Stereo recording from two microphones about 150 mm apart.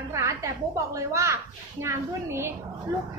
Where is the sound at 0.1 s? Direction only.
20° right (ahead or behind).